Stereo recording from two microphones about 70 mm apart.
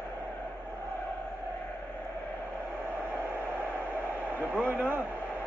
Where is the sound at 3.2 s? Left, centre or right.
Right.